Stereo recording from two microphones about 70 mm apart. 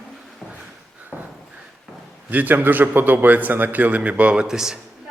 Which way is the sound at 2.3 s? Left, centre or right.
Right.